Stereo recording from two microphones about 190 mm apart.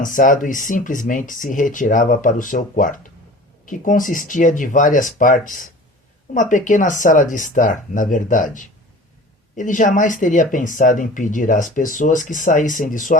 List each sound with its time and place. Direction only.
0.0 s speech: 45° left (ahead or behind)